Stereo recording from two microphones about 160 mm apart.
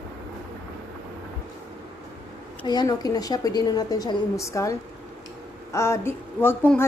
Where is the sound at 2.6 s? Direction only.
25° left (ahead or behind).